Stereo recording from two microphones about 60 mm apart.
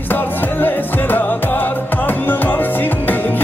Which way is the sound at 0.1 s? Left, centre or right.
Left.